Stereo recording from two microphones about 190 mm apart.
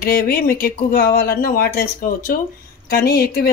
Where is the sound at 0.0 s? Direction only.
50° left (ahead or behind).